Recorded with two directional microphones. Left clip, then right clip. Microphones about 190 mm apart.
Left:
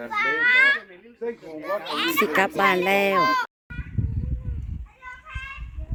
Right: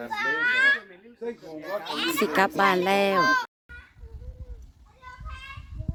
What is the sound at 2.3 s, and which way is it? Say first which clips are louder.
Speech: right 2 dB; centre (ahead or behind).